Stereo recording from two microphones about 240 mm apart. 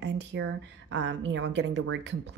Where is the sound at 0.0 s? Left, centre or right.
Right.